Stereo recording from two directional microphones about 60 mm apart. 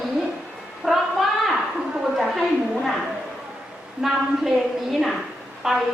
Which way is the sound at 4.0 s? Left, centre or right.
Centre.